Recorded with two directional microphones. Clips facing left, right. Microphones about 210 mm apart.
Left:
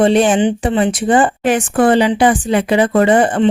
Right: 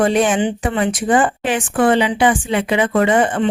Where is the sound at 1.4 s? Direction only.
40° left (ahead or behind).